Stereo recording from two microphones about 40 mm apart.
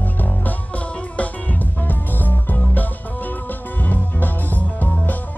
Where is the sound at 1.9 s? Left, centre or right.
Left.